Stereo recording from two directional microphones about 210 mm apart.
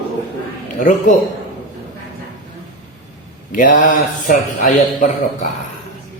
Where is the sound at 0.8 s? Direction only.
35° left (ahead or behind).